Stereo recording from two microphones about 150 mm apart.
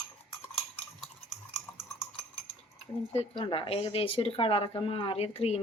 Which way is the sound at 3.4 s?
35° left (ahead or behind).